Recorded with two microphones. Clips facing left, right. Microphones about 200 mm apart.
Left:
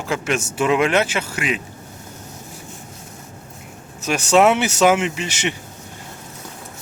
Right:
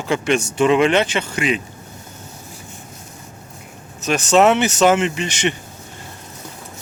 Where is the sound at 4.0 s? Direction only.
10° left (ahead or behind).